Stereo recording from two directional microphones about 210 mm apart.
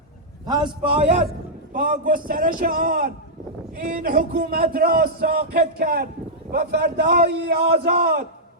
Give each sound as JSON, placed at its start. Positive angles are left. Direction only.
{"t": 0.4, "sound": "a man's voice", "side_deg": -20}
{"t": 1.7, "sound": "a man's voice", "side_deg": -40}